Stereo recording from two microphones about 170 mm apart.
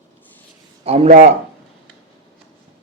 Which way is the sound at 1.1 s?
45° right (ahead or behind).